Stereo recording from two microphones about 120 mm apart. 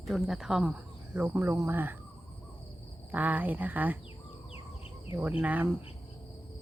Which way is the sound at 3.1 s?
15° right (ahead or behind).